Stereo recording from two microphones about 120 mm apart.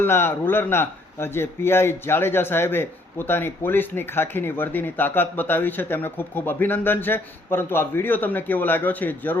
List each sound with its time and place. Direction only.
0.0 s a man's voice: 20° left (ahead or behind)